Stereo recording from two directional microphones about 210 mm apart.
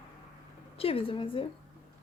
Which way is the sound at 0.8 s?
25° left (ahead or behind).